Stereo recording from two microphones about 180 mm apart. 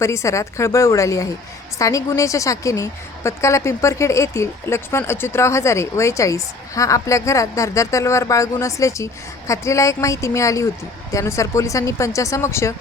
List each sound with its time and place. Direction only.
0.0 s a woman's voice: 15° left (ahead or behind)